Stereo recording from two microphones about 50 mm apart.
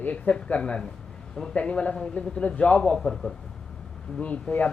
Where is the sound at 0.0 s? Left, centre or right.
Left.